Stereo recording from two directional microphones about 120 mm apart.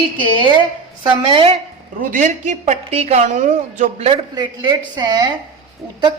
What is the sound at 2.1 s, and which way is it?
A woman's voice, 85° right.